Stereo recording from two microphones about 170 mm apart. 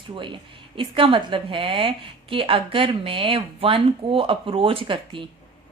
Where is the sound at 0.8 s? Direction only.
30° right (ahead or behind).